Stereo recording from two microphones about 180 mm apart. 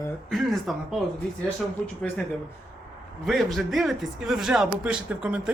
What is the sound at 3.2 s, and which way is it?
A man's voice, centre (ahead or behind).